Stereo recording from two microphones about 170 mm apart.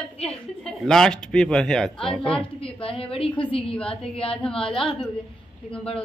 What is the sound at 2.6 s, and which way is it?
A woman's voice, 35° left (ahead or behind).